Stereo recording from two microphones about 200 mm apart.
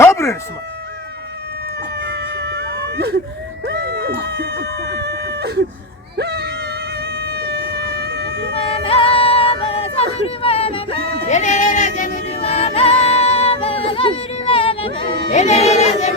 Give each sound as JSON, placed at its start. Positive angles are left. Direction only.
{"t": 0.0, "sound": "chicken", "side_deg": 15}
{"t": 2.0, "sound": "a sound", "side_deg": -55}
{"t": 8.5, "sound": "music", "side_deg": 30}